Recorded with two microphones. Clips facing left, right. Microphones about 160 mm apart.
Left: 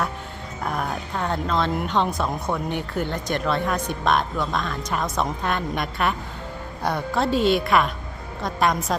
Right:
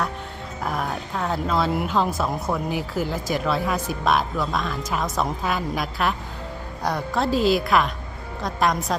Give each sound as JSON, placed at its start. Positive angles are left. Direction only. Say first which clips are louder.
{"t": 0.6, "sound": "a woman's voice", "louder": "even", "side_deg": 0}